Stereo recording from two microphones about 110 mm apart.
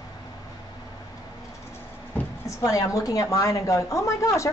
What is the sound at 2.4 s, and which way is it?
A woman's voice, 30° left (ahead or behind).